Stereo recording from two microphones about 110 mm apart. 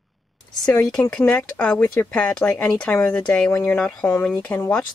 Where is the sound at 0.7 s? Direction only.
10° left (ahead or behind).